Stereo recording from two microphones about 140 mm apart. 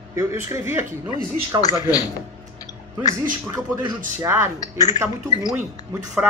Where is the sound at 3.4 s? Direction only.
30° right (ahead or behind).